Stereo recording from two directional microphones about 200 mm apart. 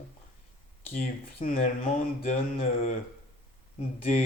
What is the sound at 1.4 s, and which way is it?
Speech, 35° left (ahead or behind).